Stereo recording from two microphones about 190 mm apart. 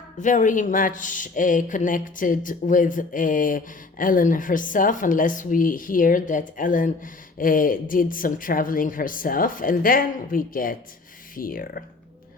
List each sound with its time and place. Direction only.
0.2 s speech: 40° left (ahead or behind)